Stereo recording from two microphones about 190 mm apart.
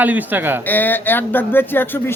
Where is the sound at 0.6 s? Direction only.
10° left (ahead or behind).